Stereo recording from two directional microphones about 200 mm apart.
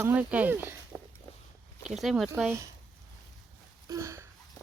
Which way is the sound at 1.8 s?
Centre (ahead or behind).